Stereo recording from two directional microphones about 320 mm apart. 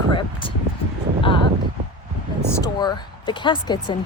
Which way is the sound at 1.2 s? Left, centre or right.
Centre.